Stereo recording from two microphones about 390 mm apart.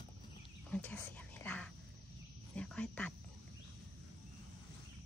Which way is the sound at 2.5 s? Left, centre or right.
Centre.